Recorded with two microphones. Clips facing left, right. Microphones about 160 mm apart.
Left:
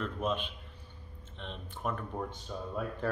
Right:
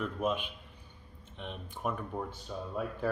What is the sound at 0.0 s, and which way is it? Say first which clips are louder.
Speech: right 1 dB; 10° right (ahead or behind).